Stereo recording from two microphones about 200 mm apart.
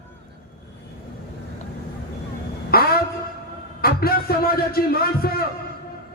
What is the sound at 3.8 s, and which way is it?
A man's voice, 50° left (ahead or behind).